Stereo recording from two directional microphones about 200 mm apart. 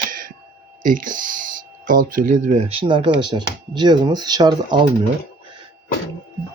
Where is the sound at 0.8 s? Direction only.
40° right (ahead or behind); by 4.9 s 20° right (ahead or behind).